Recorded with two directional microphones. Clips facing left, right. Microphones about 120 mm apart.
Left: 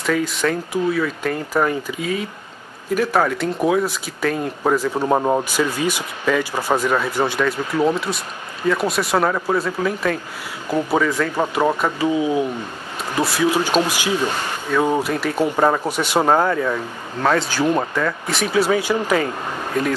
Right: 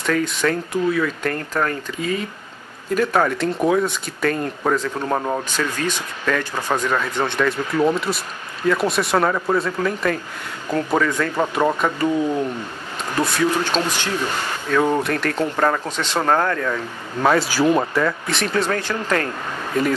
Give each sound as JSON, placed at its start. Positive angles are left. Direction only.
{"t": 0.0, "sound": "speech", "side_deg": 5}
{"t": 5.0, "sound": "speech", "side_deg": 20}
{"t": 17.2, "sound": "speech", "side_deg": -5}